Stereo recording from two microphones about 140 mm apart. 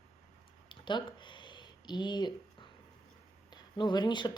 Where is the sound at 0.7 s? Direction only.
35° left (ahead or behind).